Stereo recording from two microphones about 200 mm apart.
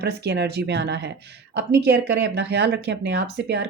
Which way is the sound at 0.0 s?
55° right (ahead or behind).